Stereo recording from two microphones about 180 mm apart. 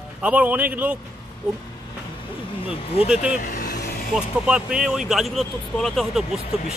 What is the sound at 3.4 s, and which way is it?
Vehicle, 55° left (ahead or behind).